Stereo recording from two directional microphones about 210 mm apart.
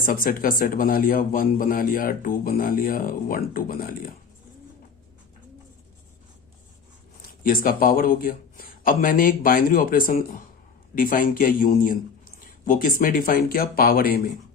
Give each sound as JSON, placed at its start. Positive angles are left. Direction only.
{"t": 0.0, "sound": "speech", "side_deg": 40}
{"t": 7.4, "sound": "speech", "side_deg": 40}